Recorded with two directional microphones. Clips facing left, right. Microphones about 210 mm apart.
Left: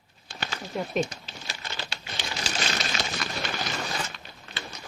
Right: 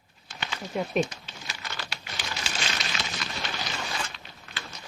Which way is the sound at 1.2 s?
30° left (ahead or behind).